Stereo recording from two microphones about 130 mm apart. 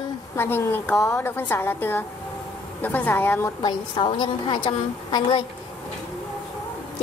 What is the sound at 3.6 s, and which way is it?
A woman's voice, 35° left (ahead or behind).